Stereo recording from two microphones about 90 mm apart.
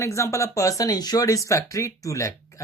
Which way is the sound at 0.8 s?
45° left (ahead or behind).